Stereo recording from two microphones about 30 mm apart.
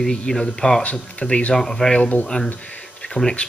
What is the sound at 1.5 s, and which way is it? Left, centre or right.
Speech, centre.